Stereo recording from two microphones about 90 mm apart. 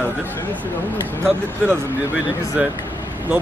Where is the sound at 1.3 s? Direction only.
20° right (ahead or behind).